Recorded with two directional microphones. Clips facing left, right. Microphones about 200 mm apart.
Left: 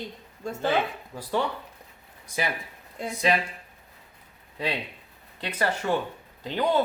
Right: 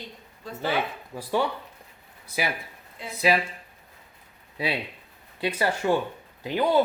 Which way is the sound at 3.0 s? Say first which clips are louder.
Left 6 dB; 45° left (ahead or behind).